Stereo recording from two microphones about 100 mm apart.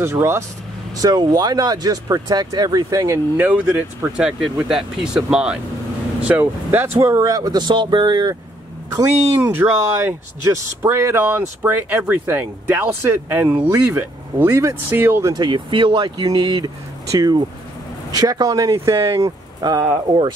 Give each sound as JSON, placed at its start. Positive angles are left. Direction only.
{"t": 0.0, "sound": "speech", "side_deg": -25}
{"t": 1.3, "sound": "speech", "side_deg": -40}
{"t": 3.3, "sound": "speech", "side_deg": -15}
{"t": 9.5, "sound": "speech", "side_deg": -20}
{"t": 14.5, "sound": "speech", "side_deg": -35}
{"t": 15.3, "sound": "speech", "side_deg": -50}
{"t": 17.1, "sound": "speech", "side_deg": -35}